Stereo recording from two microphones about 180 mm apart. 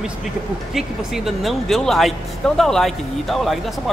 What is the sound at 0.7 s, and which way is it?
Speech, centre (ahead or behind).